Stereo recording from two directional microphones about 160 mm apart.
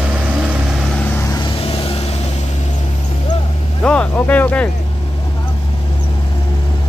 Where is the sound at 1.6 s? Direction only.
35° left (ahead or behind).